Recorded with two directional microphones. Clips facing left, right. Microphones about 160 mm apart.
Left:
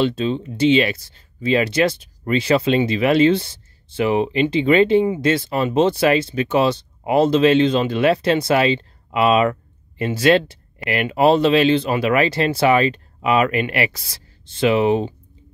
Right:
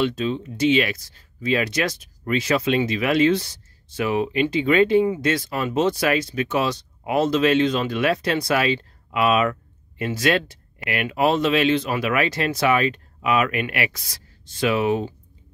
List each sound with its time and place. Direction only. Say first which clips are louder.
0.0 s speech: left 3 dB; 30° left (ahead or behind)